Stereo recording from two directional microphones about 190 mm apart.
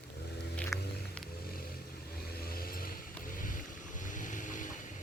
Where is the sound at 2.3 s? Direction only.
55° left (ahead or behind).